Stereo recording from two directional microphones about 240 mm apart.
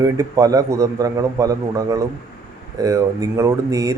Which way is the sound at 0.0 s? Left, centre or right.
Centre.